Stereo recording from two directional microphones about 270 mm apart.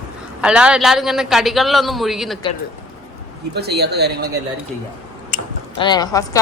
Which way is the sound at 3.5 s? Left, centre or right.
Right.